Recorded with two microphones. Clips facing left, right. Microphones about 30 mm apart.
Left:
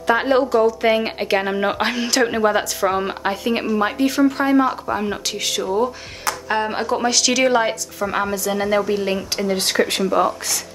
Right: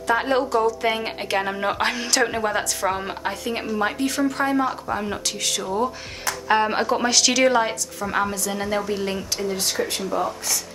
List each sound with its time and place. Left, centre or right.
0.0 s a woman's voice: left
0.3 s a woman's voice: centre
6.5 s a woman's voice: centre
9.6 s speech: left
10.1 s speech: left